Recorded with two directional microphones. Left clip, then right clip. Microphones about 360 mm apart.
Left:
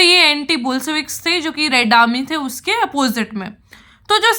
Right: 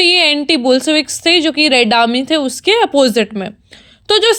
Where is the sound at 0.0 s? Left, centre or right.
Centre.